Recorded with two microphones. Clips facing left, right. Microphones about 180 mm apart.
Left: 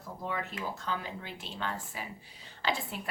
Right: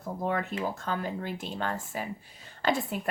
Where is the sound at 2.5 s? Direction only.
50° right (ahead or behind).